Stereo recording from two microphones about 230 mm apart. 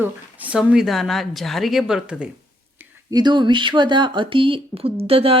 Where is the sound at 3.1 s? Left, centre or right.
Centre.